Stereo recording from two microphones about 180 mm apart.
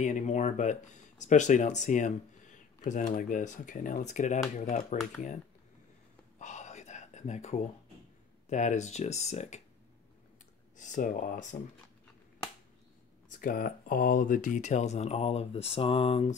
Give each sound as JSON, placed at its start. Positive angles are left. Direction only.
{"t": 0.0, "sound": "speech", "side_deg": 40}
{"t": 6.4, "sound": "whispering", "side_deg": 40}
{"t": 8.5, "sound": "speech", "side_deg": 40}
{"t": 10.8, "sound": "speech", "side_deg": 45}
{"t": 13.3, "sound": "speech", "side_deg": 50}